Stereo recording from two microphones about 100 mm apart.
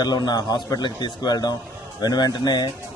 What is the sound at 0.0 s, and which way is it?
A man's voice, 45° left (ahead or behind).